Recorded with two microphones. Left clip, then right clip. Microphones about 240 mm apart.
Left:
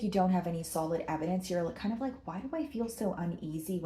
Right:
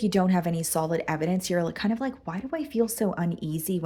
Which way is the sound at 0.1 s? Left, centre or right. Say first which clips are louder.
Right 1 dB; right.